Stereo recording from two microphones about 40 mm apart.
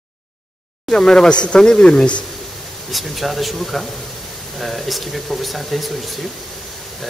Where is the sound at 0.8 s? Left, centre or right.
Centre.